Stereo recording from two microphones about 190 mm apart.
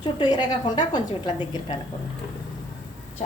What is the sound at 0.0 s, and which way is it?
A woman's voice, 20° left (ahead or behind).